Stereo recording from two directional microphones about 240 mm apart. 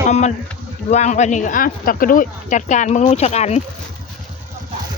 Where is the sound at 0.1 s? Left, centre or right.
Left.